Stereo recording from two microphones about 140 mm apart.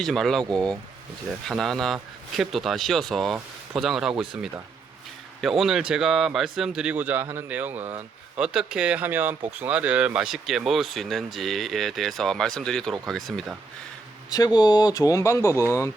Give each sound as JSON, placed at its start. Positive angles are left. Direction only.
{"t": 0.0, "sound": "speech", "side_deg": 0}
{"t": 5.4, "sound": "speech", "side_deg": 0}
{"t": 14.3, "sound": "speech", "side_deg": 25}